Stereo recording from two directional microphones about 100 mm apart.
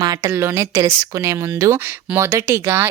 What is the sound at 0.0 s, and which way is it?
A woman's voice, 35° right (ahead or behind).